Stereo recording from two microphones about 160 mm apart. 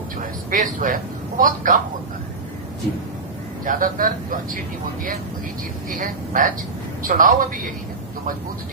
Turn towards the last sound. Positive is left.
turn(degrees=-55)  # may be behind; listen again after turning